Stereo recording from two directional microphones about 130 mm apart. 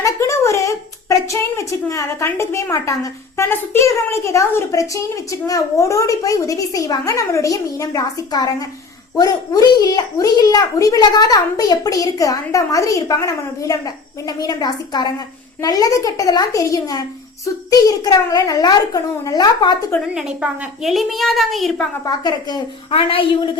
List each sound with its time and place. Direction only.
0.0 s a woman's voice: 20° left (ahead or behind)
20.1 s a woman's voice: 5° right (ahead or behind)
22.0 s a woman's voice: 35° left (ahead or behind)
22.9 s a woman's voice: 45° left (ahead or behind)